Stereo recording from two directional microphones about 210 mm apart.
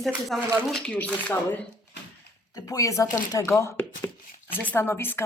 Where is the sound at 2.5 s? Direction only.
15° left (ahead or behind).